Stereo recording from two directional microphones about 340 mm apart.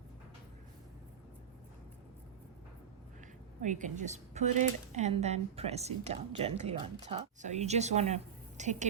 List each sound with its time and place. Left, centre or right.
3.6 s speech: right